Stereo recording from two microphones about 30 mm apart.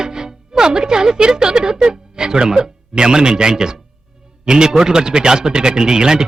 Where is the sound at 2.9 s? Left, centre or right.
Right.